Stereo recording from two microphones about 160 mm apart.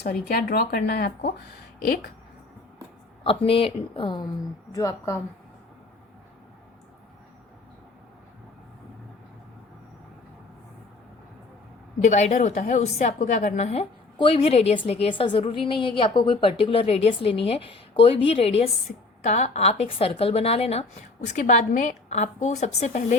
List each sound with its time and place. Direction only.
0.0 s speech: 80° left
3.2 s a woman's voice: 35° left (ahead or behind); by 5.2 s 20° left (ahead or behind)
11.9 s a woman's voice: 45° left (ahead or behind)
21.2 s a woman's voice: 50° left (ahead or behind)